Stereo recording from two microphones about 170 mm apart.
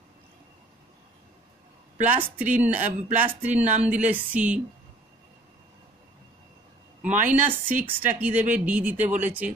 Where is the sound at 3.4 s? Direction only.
10° right (ahead or behind).